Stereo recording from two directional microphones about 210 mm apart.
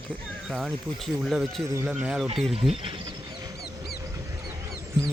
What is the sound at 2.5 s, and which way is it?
Speech, 25° right (ahead or behind).